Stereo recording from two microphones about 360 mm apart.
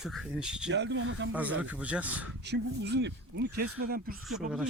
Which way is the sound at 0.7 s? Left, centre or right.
Right.